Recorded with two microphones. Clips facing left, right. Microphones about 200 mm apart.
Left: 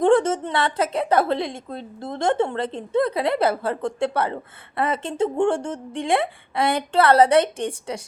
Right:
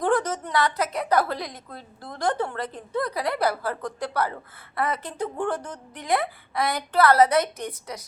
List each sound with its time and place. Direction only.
0.0 s a woman's voice: 25° left (ahead or behind)